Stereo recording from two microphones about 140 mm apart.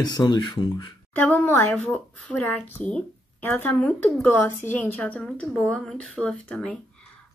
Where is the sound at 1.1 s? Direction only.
10° left (ahead or behind).